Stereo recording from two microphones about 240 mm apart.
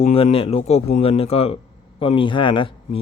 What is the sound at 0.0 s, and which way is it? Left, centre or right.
Speech, left.